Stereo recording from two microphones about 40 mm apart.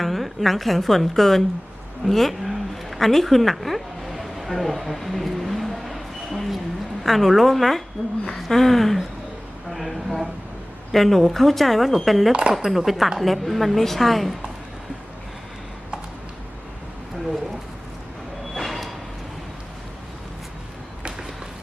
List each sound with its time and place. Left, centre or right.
0.0 s a woman's voice: centre
2.0 s a sound: centre
7.0 s a woman's voice: centre
8.0 s a woman's voice: centre
8.4 s a woman's voice: centre
12.3 s speech: right
12.5 s a woman's voice: centre
18.5 s a sound: centre